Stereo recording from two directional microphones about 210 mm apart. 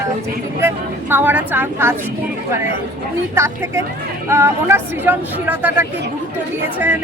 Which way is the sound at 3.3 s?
10° right (ahead or behind).